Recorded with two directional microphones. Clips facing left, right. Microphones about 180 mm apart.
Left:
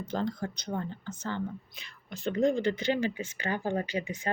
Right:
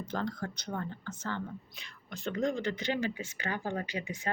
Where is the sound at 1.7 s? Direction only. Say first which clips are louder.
Left 2 dB; 5° left (ahead or behind).